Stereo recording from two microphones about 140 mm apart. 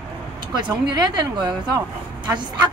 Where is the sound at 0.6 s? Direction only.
35° right (ahead or behind).